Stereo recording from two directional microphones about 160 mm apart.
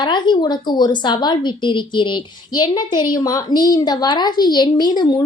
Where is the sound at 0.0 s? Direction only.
30° left (ahead or behind).